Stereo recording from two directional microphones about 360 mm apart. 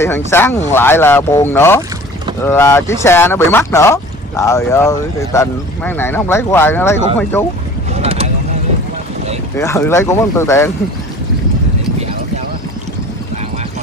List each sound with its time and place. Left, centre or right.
0.0 s speech: centre
7.9 s boat: centre
9.6 s speech: centre